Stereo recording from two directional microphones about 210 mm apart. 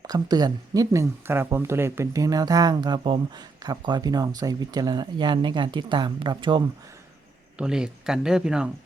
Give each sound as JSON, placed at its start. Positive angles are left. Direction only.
{"t": 0.1, "sound": "speech", "side_deg": -20}
{"t": 7.6, "sound": "speech", "side_deg": -5}